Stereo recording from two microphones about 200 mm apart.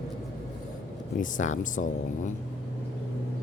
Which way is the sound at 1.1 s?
40° left (ahead or behind).